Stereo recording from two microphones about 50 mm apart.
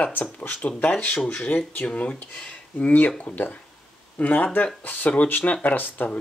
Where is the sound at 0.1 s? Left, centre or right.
Left.